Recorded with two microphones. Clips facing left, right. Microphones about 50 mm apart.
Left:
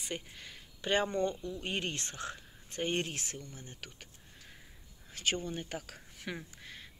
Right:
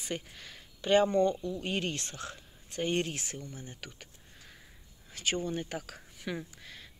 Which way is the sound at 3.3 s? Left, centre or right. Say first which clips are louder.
Right 3 dB; right.